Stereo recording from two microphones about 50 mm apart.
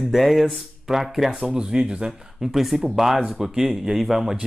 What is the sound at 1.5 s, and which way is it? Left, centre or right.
Speech, centre.